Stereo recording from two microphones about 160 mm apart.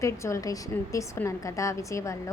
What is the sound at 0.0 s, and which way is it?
A woman's voice, 20° left (ahead or behind).